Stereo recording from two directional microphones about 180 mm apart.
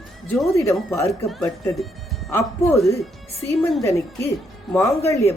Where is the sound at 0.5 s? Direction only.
15° left (ahead or behind).